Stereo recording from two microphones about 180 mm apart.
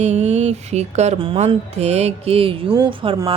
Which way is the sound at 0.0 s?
35° right (ahead or behind).